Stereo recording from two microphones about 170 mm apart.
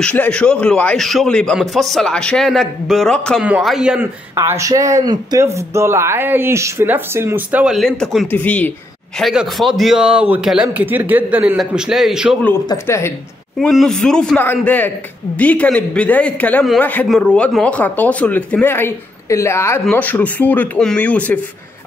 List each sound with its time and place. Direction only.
0.0 s a man's voice: 5° left (ahead or behind)
9.2 s a man's voice: centre (ahead or behind)
12.6 s a man's voice: 15° left (ahead or behind)
13.6 s a man's voice: centre (ahead or behind)